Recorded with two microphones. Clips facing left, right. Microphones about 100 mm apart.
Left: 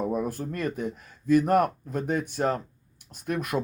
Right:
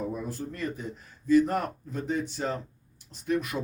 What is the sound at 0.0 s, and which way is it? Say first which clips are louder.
Speech: left 5 dB; 60° left (ahead or behind).